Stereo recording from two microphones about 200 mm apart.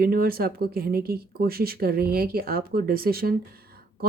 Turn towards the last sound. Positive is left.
turn(degrees=-50)  # may be behind; listen again after turning